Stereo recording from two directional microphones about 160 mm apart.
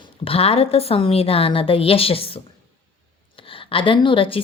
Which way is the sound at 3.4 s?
35° left (ahead or behind).